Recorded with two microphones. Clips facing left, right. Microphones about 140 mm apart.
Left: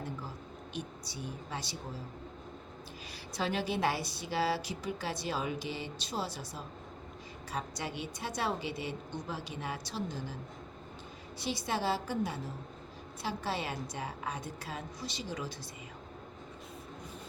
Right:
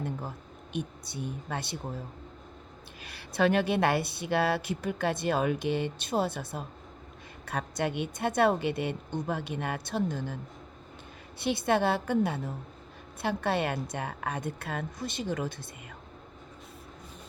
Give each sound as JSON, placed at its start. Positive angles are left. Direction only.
{"t": 0.0, "sound": "a sound", "side_deg": -55}
{"t": 3.0, "sound": "speech", "side_deg": -60}
{"t": 11.3, "sound": "speech", "side_deg": -60}